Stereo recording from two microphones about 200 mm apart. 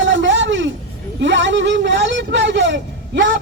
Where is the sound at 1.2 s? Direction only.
65° right (ahead or behind).